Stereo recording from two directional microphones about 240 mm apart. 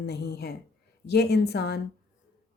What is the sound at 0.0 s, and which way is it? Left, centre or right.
Speech, left.